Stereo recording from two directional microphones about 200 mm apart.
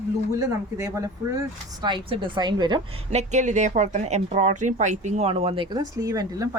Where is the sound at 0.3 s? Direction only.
15° right (ahead or behind).